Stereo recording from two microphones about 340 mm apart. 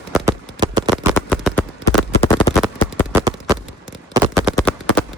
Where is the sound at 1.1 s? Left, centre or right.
Centre.